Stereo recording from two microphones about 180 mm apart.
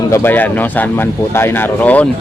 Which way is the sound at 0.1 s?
10° left (ahead or behind).